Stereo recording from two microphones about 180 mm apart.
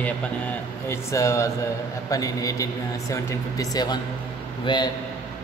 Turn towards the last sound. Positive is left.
turn(degrees=25)  # may be behind; listen again after turning